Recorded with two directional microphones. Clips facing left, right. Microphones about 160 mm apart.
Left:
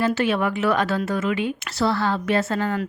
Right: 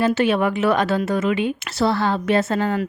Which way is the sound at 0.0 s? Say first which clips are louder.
Right 3 dB; 20° right (ahead or behind).